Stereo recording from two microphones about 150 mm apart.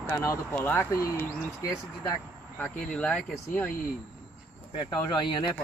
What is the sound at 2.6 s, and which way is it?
Speech, 5° left (ahead or behind).